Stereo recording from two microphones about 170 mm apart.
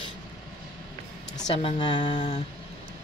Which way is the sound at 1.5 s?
35° left (ahead or behind).